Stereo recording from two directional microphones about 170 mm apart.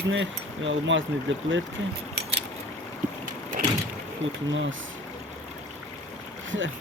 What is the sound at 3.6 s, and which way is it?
Vehicle, 55° right (ahead or behind).